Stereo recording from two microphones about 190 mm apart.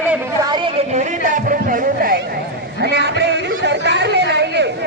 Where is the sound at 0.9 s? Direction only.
40° right (ahead or behind).